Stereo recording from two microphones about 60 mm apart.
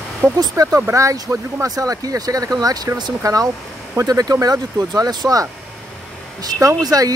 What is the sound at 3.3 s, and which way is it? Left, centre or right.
Speech, right.